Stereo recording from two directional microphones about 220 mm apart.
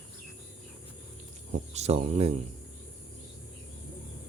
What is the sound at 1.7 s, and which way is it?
Speech, 30° right (ahead or behind).